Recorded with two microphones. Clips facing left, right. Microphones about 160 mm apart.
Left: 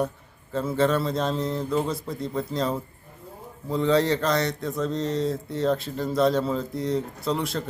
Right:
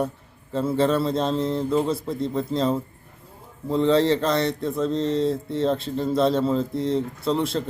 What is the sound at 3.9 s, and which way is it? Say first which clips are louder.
Speech: right 2 dB; 30° right (ahead or behind).